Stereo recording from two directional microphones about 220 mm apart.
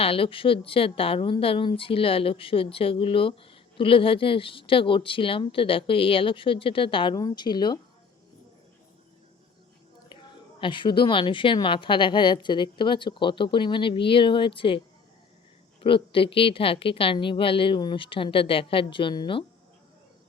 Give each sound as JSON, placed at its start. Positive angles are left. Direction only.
{"t": 0.0, "sound": "a woman's voice", "side_deg": 25}
{"t": 10.6, "sound": "a woman's voice", "side_deg": 20}
{"t": 15.8, "sound": "a woman's voice", "side_deg": 25}